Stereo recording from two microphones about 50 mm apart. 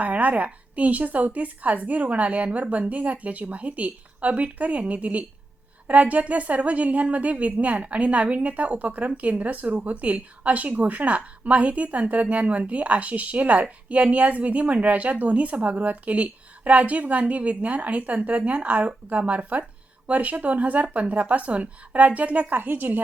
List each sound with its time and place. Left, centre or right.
0.0 s a woman's voice: right
22.5 s a woman's voice: right